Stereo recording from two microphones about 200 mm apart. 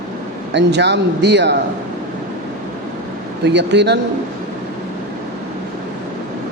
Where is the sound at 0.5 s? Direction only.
60° right (ahead or behind).